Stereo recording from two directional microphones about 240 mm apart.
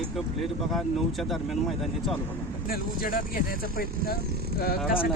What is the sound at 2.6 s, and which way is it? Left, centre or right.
Speech, left.